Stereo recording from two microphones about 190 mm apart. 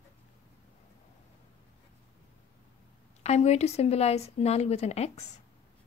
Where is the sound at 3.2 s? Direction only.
35° left (ahead or behind).